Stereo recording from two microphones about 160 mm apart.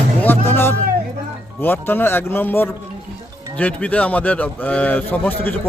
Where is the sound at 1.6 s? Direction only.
15° left (ahead or behind).